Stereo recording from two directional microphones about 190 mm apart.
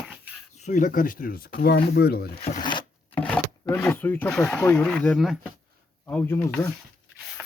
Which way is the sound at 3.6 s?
10° left (ahead or behind).